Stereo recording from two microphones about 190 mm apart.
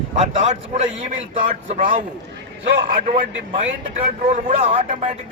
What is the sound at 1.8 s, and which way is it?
Speech, 45° right (ahead or behind).